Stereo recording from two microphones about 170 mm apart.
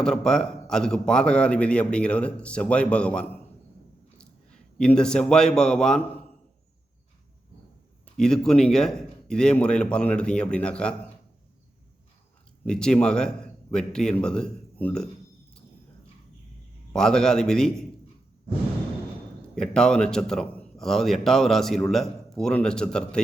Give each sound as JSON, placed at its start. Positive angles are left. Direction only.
{"t": 0.0, "sound": "a man's voice", "side_deg": 5}
{"t": 8.2, "sound": "a man's voice", "side_deg": 5}
{"t": 12.6, "sound": "a man's voice", "side_deg": 5}
{"t": 16.9, "sound": "a man's voice", "side_deg": 5}
{"t": 19.4, "sound": "a man's voice", "side_deg": 5}